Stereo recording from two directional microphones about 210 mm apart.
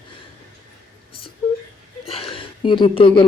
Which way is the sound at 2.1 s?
25° left (ahead or behind).